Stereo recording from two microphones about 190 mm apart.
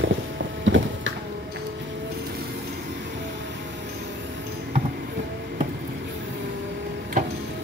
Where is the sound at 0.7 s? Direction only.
80° right.